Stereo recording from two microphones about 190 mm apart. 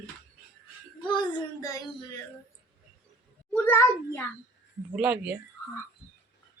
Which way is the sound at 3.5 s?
10° left (ahead or behind).